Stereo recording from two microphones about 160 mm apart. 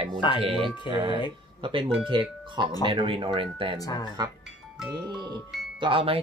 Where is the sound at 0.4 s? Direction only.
35° right (ahead or behind).